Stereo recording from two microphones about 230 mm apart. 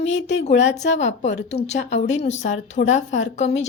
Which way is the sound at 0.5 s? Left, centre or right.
Left.